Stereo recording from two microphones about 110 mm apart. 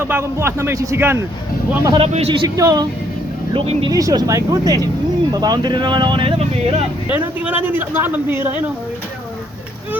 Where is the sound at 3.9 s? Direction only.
35° right (ahead or behind).